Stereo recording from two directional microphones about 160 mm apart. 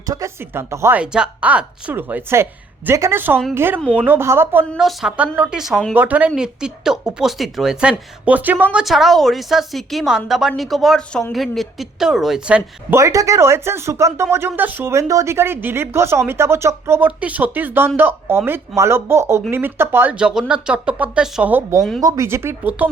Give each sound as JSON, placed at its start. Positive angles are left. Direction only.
{"t": 0.0, "sound": "speech", "side_deg": -20}
{"t": 4.7, "sound": "speech", "side_deg": 0}
{"t": 5.9, "sound": "speech", "side_deg": -10}
{"t": 13.0, "sound": "speech", "side_deg": -20}
{"t": 22.0, "sound": "speech", "side_deg": -20}